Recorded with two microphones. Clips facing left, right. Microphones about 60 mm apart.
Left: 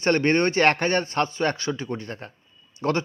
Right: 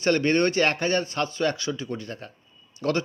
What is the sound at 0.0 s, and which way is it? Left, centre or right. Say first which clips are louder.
Speech: left 1 dB; left.